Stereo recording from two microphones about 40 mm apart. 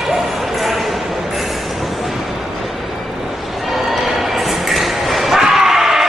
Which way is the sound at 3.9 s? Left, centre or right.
Centre.